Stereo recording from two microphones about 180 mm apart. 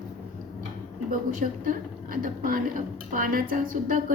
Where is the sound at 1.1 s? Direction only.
50° right (ahead or behind).